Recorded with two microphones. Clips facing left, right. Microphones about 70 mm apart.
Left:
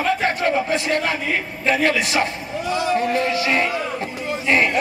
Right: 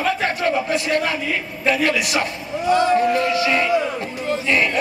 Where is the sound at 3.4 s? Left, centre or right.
Left.